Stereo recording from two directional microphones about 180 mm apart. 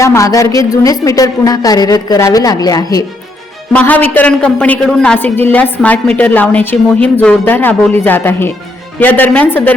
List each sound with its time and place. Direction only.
0.0 s a woman's voice: 15° left (ahead or behind)
3.7 s a man's voice: 10° left (ahead or behind)